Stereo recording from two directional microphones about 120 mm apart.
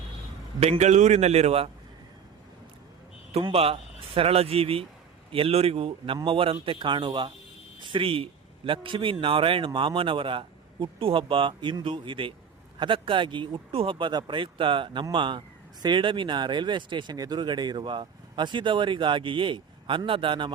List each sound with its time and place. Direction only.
0.6 s a man's voice: 60° right (ahead or behind)
3.5 s a man's voice: 55° right (ahead or behind)